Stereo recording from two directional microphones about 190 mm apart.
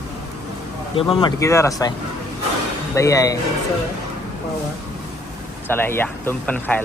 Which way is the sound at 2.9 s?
15° left (ahead or behind).